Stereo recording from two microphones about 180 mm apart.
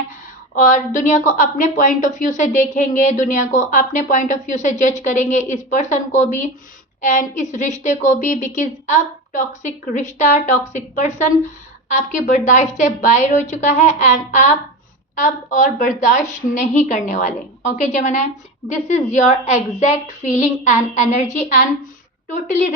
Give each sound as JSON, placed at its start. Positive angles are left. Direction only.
{"t": 0.5, "sound": "a woman's voice", "side_deg": 45}
{"t": 22.3, "sound": "a woman's voice", "side_deg": 45}